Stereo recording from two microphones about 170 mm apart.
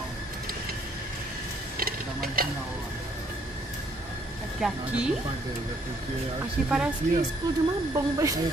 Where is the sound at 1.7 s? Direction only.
60° right (ahead or behind).